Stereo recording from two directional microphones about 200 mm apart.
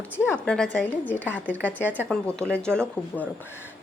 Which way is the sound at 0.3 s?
5° left (ahead or behind).